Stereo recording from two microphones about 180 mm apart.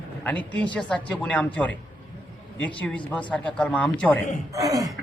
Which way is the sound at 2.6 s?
10° left (ahead or behind).